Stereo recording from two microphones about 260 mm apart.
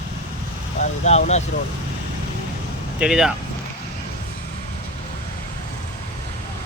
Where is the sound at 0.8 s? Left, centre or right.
Left.